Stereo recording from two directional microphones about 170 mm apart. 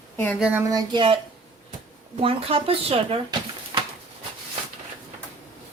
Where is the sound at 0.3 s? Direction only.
5° right (ahead or behind).